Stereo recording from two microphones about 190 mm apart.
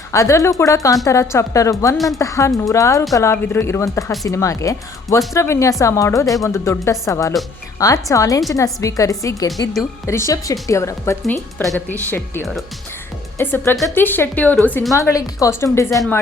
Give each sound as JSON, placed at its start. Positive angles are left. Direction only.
{"t": 0.1, "sound": "a woman's voice", "side_deg": 15}
{"t": 11.2, "sound": "a woman's voice", "side_deg": 5}